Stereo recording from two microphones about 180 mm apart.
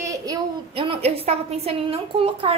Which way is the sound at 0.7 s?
30° right (ahead or behind).